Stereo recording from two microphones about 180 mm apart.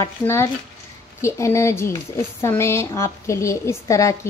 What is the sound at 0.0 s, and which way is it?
A woman's voice, 15° left (ahead or behind).